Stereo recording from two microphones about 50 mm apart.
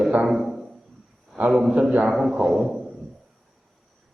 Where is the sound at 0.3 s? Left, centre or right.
Centre.